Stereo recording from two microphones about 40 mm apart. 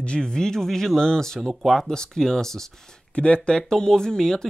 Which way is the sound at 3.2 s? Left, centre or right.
Left.